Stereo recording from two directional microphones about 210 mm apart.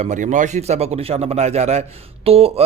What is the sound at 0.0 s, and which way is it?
Speech, 35° right (ahead or behind).